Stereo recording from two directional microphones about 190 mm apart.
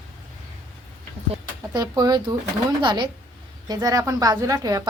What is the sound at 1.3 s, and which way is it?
A woman's voice, 20° right (ahead or behind).